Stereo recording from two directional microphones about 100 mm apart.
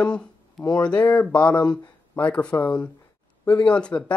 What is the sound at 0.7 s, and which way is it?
Speech, 10° left (ahead or behind).